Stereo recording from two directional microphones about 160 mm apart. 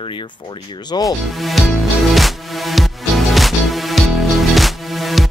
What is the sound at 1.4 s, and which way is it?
Music, centre (ahead or behind).